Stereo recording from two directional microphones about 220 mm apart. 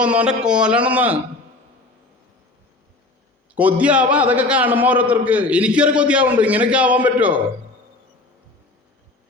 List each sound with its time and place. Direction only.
0.0 s a man's voice: 5° right (ahead or behind)
3.5 s a man's voice: 5° right (ahead or behind)